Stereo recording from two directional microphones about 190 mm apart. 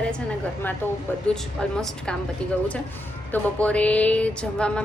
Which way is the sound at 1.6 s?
5° left (ahead or behind).